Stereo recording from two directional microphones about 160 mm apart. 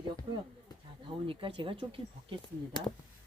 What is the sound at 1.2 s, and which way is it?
Speech, 35° right (ahead or behind).